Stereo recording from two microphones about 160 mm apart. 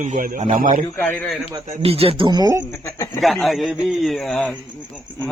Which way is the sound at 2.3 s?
25° right (ahead or behind).